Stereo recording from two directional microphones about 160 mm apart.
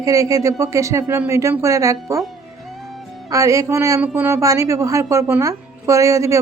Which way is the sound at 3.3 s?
20° right (ahead or behind).